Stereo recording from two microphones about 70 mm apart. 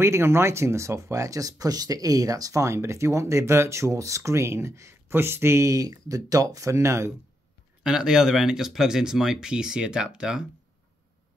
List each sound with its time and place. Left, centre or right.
0.0 s speech: right
7.8 s speech: centre